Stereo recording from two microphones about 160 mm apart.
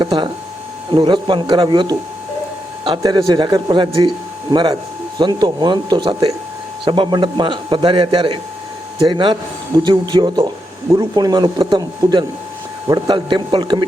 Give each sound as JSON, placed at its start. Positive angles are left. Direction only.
{"t": 0.0, "sound": "a man's voice", "side_deg": -30}